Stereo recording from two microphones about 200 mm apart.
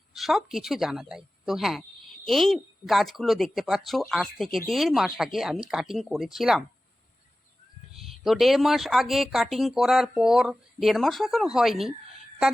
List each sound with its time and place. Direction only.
0.1 s a woman's voice: centre (ahead or behind)
7.9 s speech: centre (ahead or behind)